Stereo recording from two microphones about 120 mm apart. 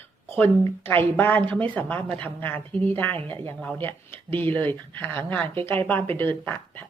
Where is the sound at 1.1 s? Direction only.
15° left (ahead or behind).